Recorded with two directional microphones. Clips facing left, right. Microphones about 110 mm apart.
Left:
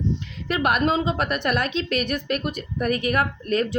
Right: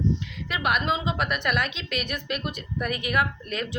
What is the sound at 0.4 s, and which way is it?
A woman's voice, 45° left (ahead or behind).